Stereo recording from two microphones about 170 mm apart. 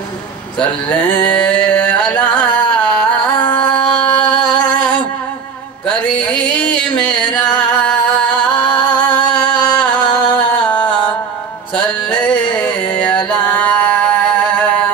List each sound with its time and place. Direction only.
1.2 s music: 10° left (ahead or behind)
2.7 s a sound: 5° left (ahead or behind)
4.6 s music: 5° left (ahead or behind)